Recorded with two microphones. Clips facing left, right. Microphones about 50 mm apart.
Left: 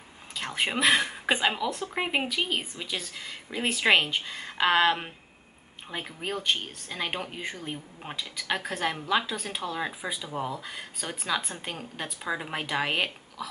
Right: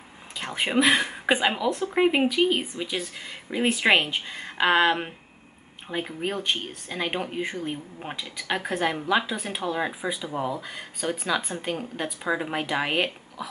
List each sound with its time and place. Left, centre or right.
0.4 s speech: centre